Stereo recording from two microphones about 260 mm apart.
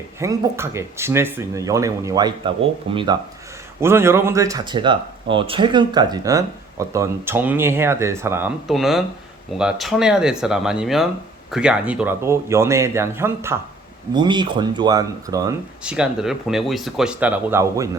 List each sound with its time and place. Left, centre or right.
0.2 s speech: centre